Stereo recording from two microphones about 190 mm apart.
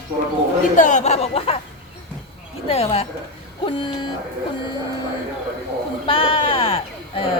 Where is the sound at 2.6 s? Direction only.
30° left (ahead or behind).